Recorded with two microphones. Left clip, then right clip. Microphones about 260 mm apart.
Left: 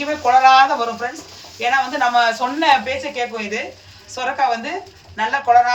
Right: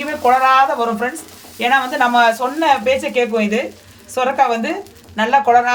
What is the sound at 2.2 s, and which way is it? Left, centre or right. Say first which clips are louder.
Speech: right 2 dB; right.